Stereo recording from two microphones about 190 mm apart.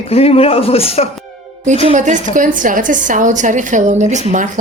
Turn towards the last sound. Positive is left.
turn(degrees=-40)  # may be behind; listen again after turning